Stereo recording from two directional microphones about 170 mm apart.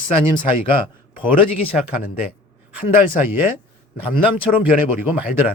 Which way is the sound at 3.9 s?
55° left (ahead or behind).